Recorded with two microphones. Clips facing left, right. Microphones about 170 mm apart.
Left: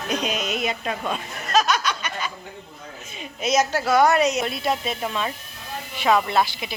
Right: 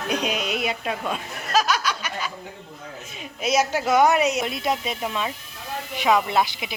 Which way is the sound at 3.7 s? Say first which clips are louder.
Even; 20° right (ahead or behind).